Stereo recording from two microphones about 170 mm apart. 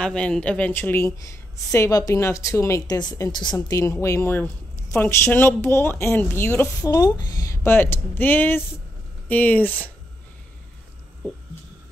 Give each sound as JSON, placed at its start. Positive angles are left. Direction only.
{"t": 0.0, "sound": "a woman's voice", "side_deg": 5}